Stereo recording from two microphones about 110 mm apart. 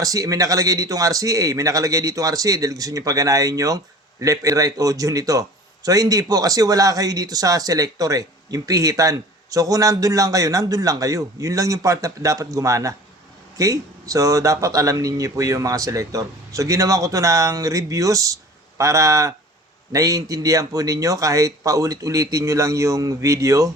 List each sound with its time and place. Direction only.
0.0 s a man's voice: 30° right (ahead or behind)